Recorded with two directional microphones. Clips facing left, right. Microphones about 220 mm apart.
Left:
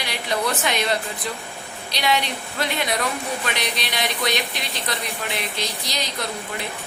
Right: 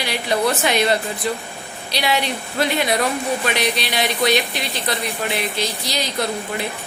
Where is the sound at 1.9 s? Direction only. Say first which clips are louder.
Right 2 dB; 5° right (ahead or behind).